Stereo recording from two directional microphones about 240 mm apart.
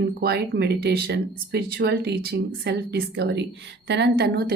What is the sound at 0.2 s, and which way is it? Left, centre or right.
A woman's voice, right.